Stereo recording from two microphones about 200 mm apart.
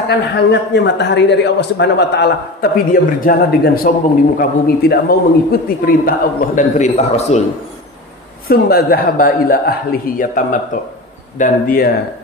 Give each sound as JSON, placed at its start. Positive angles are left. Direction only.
{"t": 0.5, "sound": "a man's voice", "side_deg": 60}
{"t": 8.5, "sound": "a man's voice", "side_deg": 50}